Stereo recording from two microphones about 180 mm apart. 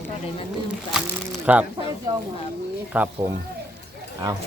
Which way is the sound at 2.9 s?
10° right (ahead or behind).